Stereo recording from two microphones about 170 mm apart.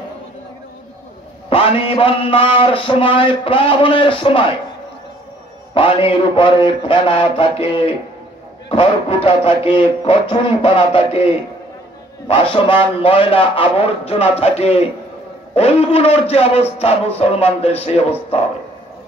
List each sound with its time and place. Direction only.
1.5 s a man's voice: 35° left (ahead or behind)
5.8 s a man's voice: 30° left (ahead or behind)
12.3 s a man's voice: 30° left (ahead or behind)